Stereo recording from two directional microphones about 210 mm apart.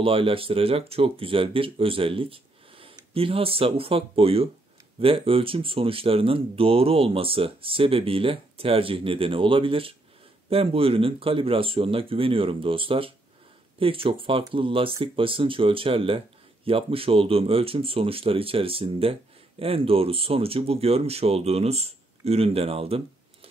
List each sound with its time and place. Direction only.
0.0 s speech: 25° right (ahead or behind)